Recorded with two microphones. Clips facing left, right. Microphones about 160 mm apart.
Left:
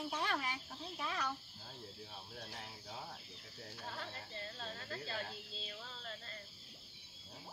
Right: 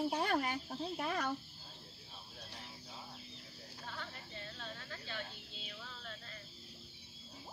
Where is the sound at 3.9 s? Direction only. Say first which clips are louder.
Right 1 dB; 35° left (ahead or behind).